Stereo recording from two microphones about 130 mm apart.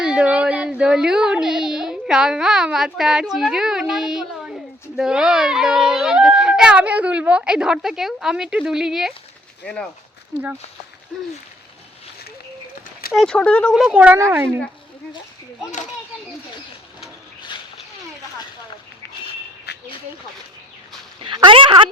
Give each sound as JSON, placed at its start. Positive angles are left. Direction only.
{"t": 0.0, "sound": "speech", "side_deg": -5}
{"t": 9.6, "sound": "speech", "side_deg": 10}
{"t": 13.1, "sound": "speech", "side_deg": 5}
{"t": 13.9, "sound": "speech", "side_deg": -10}
{"t": 21.2, "sound": "speech", "side_deg": -40}